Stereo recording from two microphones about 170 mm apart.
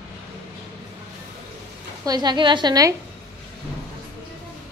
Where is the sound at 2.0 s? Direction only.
25° right (ahead or behind).